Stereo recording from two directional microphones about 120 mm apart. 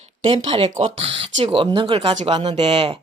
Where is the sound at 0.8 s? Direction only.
55° right (ahead or behind).